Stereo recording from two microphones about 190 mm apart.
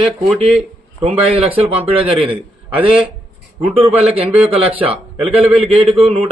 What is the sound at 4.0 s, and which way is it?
A man's voice, 30° right (ahead or behind).